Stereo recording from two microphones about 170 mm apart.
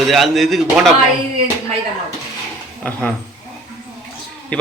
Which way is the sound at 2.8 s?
5° left (ahead or behind).